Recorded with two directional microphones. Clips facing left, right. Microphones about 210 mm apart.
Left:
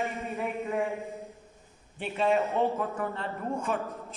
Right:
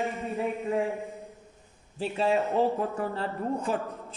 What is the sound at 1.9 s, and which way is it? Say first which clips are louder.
Speech: right 1 dB; 35° right (ahead or behind).